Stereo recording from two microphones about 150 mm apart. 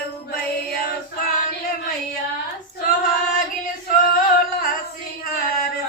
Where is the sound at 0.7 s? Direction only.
90° left.